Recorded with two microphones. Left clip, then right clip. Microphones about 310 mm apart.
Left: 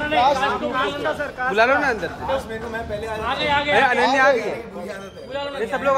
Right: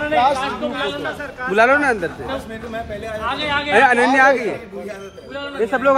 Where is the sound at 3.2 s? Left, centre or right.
Right.